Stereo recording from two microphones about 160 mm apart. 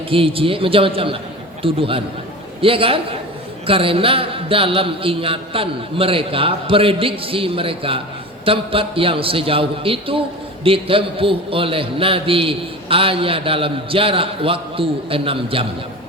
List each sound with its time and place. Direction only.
0.1 s a man's voice: 35° right (ahead or behind)